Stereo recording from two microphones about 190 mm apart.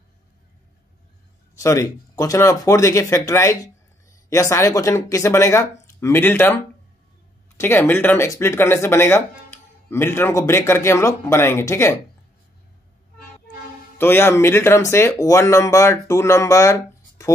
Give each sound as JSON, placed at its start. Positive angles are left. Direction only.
{"t": 1.6, "sound": "speech", "side_deg": 15}
{"t": 13.9, "sound": "speech", "side_deg": 10}